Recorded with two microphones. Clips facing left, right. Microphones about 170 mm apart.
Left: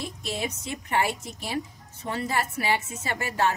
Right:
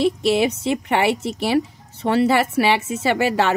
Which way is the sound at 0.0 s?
75° right (ahead or behind).